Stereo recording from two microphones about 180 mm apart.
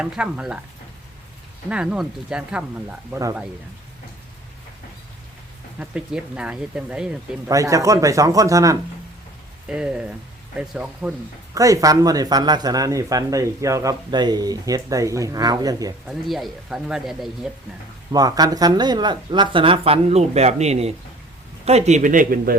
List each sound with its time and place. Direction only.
0.0 s speech: 5° right (ahead or behind)
1.7 s speech: 5° right (ahead or behind)
5.8 s speech: 5° right (ahead or behind)
7.4 s a man's voice: 20° right (ahead or behind)
9.6 s a man's voice: 5° right (ahead or behind)
11.5 s speech: 20° right (ahead or behind)
16.0 s speech: centre (ahead or behind)
18.1 s a man's voice: 20° right (ahead or behind); by 22.5 s 50° right (ahead or behind)